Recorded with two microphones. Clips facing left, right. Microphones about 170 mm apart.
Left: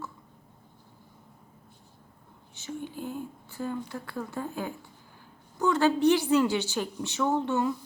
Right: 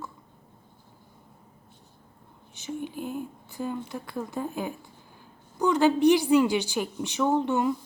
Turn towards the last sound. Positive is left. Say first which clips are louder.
# right 2 dB
turn(degrees=-15)  # may be behind; listen again after turning